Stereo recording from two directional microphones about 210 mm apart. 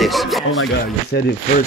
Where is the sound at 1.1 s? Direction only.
50° left (ahead or behind).